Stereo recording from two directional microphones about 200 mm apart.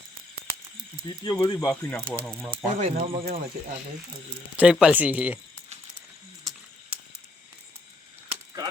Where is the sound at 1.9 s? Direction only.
5° left (ahead or behind).